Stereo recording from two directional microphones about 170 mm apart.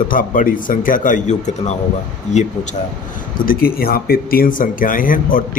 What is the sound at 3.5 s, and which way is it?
Speech, 60° left (ahead or behind).